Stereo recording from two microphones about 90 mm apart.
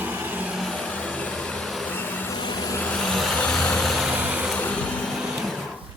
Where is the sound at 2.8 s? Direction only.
10° left (ahead or behind).